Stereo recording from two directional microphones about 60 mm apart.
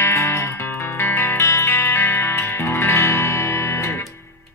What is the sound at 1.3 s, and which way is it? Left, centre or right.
Music, left.